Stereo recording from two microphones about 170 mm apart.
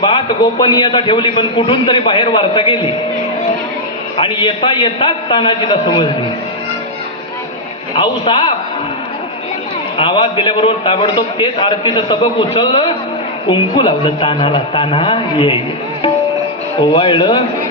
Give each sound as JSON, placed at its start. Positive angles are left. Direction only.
{"t": 0.0, "sound": "a man's voice", "side_deg": 30}
{"t": 4.2, "sound": "a man's voice", "side_deg": 30}
{"t": 7.9, "sound": "a man's voice", "side_deg": 30}
{"t": 10.0, "sound": "a man's voice", "side_deg": 30}
{"t": 16.8, "sound": "a man's voice", "side_deg": 30}